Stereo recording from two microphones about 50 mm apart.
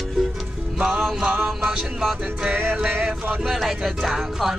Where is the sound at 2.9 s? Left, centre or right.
Right.